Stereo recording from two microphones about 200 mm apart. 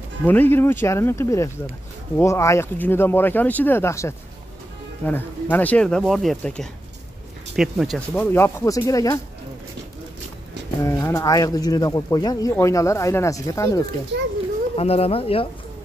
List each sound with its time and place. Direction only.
0.2 s speech: 10° left (ahead or behind)
10.8 s speech: 15° left (ahead or behind)
14.8 s speech: 30° left (ahead or behind)